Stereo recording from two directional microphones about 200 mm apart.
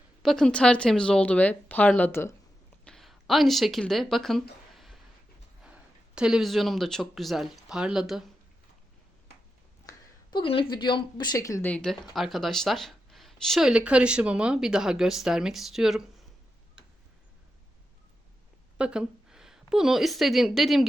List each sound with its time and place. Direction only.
0.2 s speech: centre (ahead or behind)
4.7 s a sound: centre (ahead or behind)
5.6 s speech: 5° right (ahead or behind)
9.9 s a sound: 15° left (ahead or behind)
10.3 s speech: 25° left (ahead or behind); by 16.0 s centre (ahead or behind)
18.8 s a woman's voice: 5° right (ahead or behind)